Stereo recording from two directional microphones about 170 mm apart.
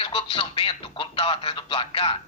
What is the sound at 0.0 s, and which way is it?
A man's voice, 30° left (ahead or behind).